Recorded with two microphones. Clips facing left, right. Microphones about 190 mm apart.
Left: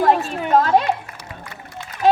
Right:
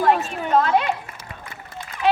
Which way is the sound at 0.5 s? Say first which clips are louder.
Left 3 dB; 40° left (ahead or behind).